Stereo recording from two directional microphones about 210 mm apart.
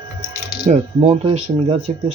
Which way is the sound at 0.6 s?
30° right (ahead or behind).